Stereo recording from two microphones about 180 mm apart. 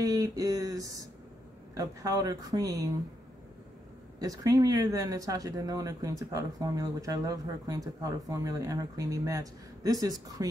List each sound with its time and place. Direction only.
0.0 s speech: 20° right (ahead or behind)
4.2 s speech: 20° right (ahead or behind)